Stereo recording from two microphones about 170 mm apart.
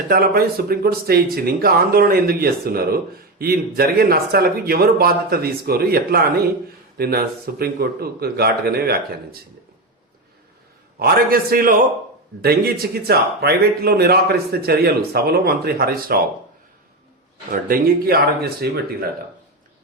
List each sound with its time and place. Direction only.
0.1 s speech: 65° right (ahead or behind)
11.0 s speech: 60° right (ahead or behind)
17.5 s speech: 60° right (ahead or behind)